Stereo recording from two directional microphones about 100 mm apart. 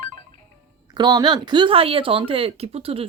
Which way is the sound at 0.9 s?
45° right (ahead or behind).